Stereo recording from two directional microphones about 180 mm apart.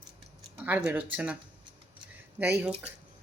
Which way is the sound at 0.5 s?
10° right (ahead or behind).